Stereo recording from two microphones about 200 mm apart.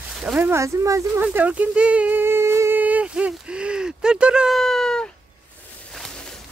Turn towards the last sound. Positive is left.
turn(degrees=0)  # may be behind; listen again after turning